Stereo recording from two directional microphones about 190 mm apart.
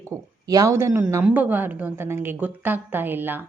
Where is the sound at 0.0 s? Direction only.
15° right (ahead or behind).